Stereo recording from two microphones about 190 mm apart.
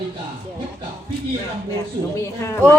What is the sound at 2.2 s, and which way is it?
Speech, 15° left (ahead or behind).